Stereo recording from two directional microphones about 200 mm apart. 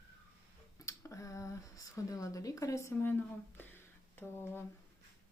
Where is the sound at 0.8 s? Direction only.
15° left (ahead or behind).